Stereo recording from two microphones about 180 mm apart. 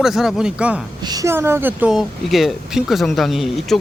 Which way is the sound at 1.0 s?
20° right (ahead or behind).